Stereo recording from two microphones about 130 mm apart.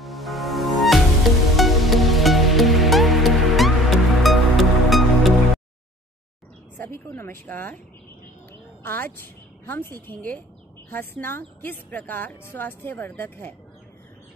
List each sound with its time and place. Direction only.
0.0 s music: centre (ahead or behind)
6.8 s a sound: 15° left (ahead or behind)
8.8 s a woman's voice: 15° left (ahead or behind)